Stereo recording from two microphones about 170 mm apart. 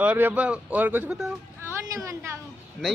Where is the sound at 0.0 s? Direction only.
10° right (ahead or behind).